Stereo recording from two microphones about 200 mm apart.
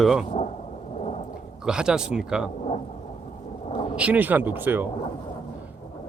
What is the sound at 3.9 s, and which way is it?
Speech, 5° right (ahead or behind).